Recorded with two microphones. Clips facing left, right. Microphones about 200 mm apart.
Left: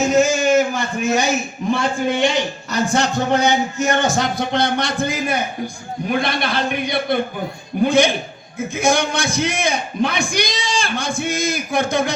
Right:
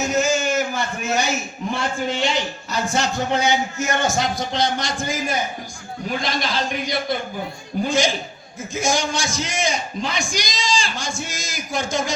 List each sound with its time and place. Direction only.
0.2 s a man's voice: 60° left (ahead or behind)